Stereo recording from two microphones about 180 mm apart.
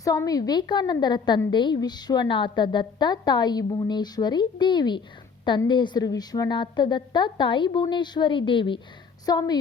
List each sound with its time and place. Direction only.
0.0 s a woman's voice: 20° left (ahead or behind)